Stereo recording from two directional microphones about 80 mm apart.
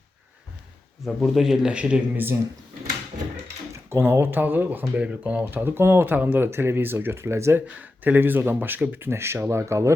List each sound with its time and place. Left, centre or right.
1.0 s speech: centre
3.7 s speech: right
7.8 s speech: right